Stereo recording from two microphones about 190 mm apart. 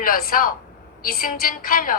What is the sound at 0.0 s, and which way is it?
A woman's voice, 50° left (ahead or behind).